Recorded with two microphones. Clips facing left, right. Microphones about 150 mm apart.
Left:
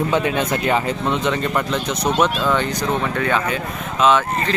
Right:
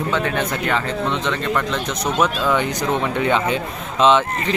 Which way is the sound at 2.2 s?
10° right (ahead or behind).